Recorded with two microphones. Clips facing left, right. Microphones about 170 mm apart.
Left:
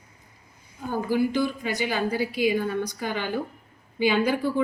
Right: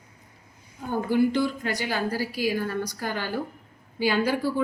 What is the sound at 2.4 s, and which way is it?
Speech, 5° right (ahead or behind).